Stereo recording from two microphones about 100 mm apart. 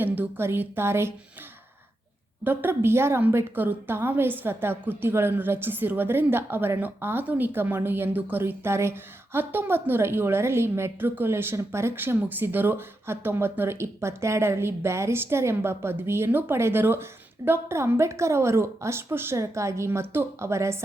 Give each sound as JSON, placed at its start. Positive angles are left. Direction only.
{"t": 0.0, "sound": "a woman's voice", "side_deg": -20}
{"t": 2.4, "sound": "a woman's voice", "side_deg": -20}